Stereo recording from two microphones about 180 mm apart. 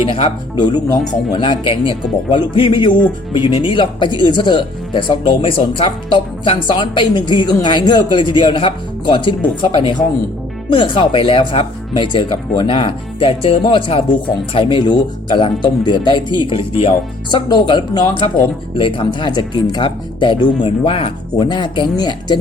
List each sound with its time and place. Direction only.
0.0 s speech: 30° left (ahead or behind)